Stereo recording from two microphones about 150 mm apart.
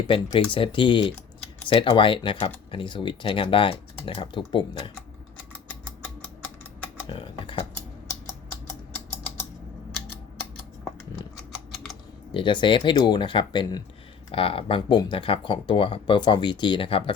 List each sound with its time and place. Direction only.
0.1 s speech: 35° left (ahead or behind)
7.1 s typing: 35° left (ahead or behind)
11.3 s mechanisms: centre (ahead or behind)
12.3 s speech: 35° left (ahead or behind)